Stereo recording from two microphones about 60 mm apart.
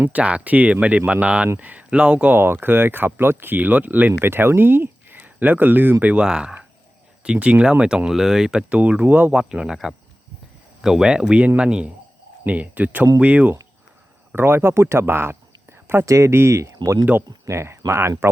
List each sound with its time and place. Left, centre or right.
0.1 s speech: right
2.3 s speech: right
4.2 s speech: right
6.2 s speech: centre
8.7 s speech: right
9.3 s speech: centre
10.8 s speech: centre
14.3 s speech: right
16.0 s speech: right
16.3 s speech: right
16.7 s speech: right
17.5 s speech: right